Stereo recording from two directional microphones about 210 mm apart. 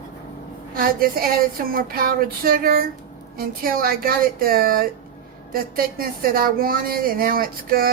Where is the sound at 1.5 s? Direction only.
45° right (ahead or behind).